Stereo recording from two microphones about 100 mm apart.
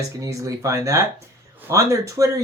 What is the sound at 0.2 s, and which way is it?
Speech, 35° right (ahead or behind).